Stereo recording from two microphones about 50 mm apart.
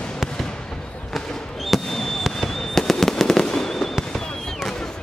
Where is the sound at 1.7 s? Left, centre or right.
Centre.